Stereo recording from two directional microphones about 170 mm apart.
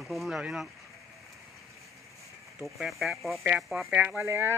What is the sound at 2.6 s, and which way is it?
Speech, centre (ahead or behind).